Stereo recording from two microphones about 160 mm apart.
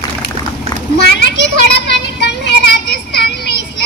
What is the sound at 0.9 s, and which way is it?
Child singing, 90° left.